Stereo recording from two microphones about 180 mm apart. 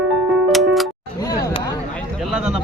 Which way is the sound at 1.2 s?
20° left (ahead or behind).